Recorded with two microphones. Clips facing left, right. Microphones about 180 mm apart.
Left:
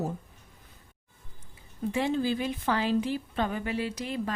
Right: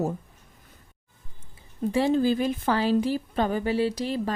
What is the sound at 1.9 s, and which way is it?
A woman's voice, 40° right (ahead or behind).